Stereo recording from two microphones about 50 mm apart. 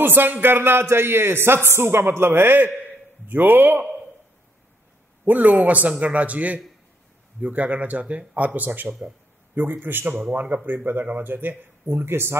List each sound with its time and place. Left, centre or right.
0.0 s a man's voice: right
5.2 s a man's voice: right